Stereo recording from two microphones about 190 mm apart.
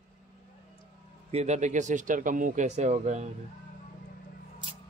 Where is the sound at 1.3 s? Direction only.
35° right (ahead or behind).